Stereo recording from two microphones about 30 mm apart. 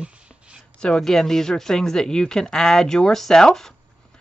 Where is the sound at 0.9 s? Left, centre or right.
Centre.